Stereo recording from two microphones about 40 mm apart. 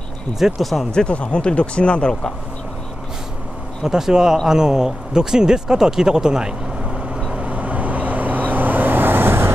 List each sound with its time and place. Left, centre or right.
0.6 s speech: centre
0.9 s speech: left
3.8 s speech: centre
7.3 s vehicle: right